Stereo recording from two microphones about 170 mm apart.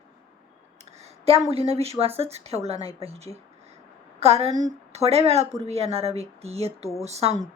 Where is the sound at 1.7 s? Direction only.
35° right (ahead or behind).